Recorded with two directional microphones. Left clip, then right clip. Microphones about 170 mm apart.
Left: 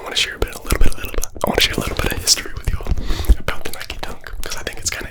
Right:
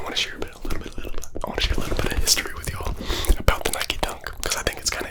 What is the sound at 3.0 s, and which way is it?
Whispering, 35° right (ahead or behind).